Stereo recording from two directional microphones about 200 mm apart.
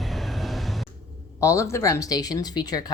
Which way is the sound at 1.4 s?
15° left (ahead or behind).